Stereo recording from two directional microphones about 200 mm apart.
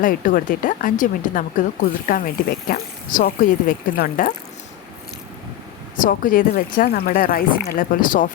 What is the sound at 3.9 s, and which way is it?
Speech, 45° left (ahead or behind).